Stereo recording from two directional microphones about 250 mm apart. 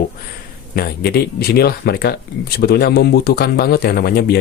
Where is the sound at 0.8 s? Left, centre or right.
Left.